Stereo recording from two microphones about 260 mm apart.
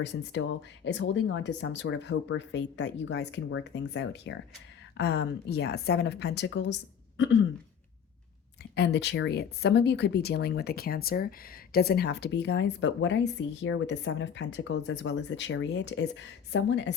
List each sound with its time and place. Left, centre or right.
0.9 s speech: left
8.7 s speech: left